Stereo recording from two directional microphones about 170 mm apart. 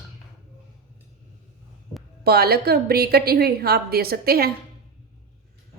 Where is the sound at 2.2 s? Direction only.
65° right (ahead or behind).